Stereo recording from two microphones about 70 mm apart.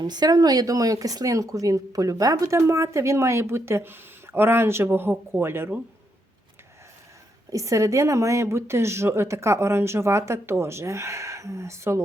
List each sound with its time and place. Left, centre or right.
0.0 s speech: right
7.5 s speech: right